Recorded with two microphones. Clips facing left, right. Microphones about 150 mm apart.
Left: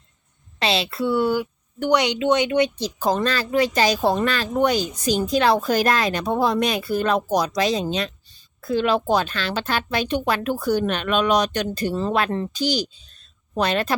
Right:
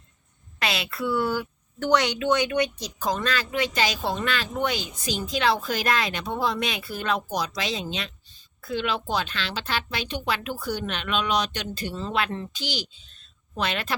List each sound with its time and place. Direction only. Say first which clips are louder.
0.6 s a woman's voice: left 6 dB; 30° left (ahead or behind)